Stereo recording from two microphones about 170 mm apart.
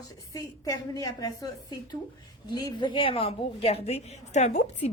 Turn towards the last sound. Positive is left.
turn(degrees=40)  # may be behind; listen again after turning